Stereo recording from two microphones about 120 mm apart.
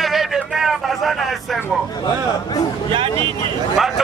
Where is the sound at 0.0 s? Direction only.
Centre (ahead or behind).